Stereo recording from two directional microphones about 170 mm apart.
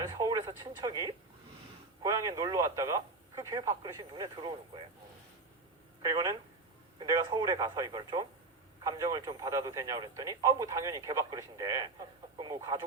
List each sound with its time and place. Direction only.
0.0 s a sound: 20° right (ahead or behind)
2.0 s speech: 20° right (ahead or behind)
6.0 s speech: 20° right (ahead or behind)